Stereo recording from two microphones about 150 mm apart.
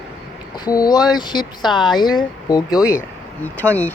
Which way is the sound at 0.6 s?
25° left (ahead or behind).